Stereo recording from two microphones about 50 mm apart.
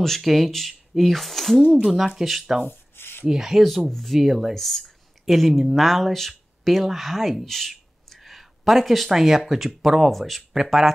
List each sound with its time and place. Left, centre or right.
0.0 s speech: centre
2.7 s a sound: left
3.3 s speech: centre
3.6 s speech: centre